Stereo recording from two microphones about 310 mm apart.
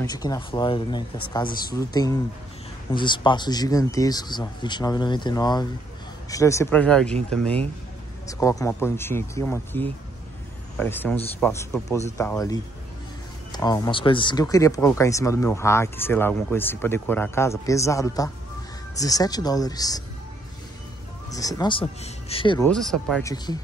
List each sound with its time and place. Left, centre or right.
0.0 s speech: centre
8.3 s speech: centre
21.3 s speech: centre
22.7 s speech: centre
23.3 s speech: centre